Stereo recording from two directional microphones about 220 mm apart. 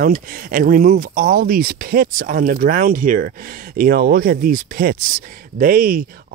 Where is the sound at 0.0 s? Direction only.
40° right (ahead or behind).